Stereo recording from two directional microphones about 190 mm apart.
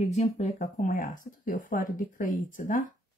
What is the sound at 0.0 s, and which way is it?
Speech, 35° left (ahead or behind).